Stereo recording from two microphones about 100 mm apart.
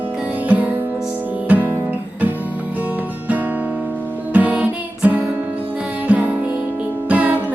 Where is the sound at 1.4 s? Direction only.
20° right (ahead or behind).